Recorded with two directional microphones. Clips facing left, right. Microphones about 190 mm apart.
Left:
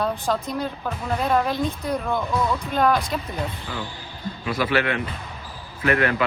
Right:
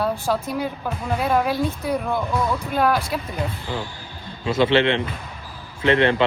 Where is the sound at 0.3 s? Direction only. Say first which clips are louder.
Right 2 dB; 5° right (ahead or behind).